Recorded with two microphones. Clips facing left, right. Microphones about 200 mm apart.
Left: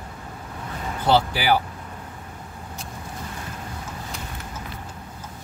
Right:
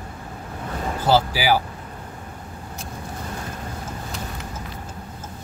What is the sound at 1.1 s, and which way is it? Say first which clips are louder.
Speech: right 1 dB; 5° right (ahead or behind).